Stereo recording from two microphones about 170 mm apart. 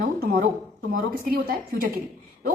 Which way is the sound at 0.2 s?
60° right (ahead or behind).